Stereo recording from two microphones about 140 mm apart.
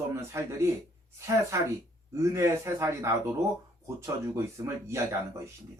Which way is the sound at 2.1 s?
20° right (ahead or behind).